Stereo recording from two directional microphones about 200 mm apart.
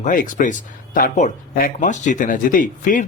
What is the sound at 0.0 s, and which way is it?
Speech, 40° left (ahead or behind).